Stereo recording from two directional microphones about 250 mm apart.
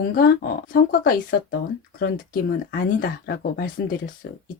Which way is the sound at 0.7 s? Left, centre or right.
Left.